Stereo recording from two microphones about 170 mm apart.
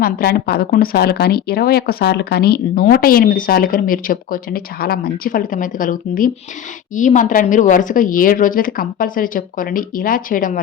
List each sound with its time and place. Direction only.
0.0 s a woman's voice: 65° left (ahead or behind)